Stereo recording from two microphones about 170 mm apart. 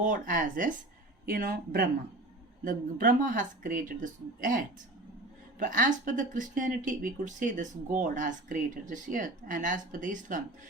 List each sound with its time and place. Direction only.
0.0 s speech: 50° right (ahead or behind)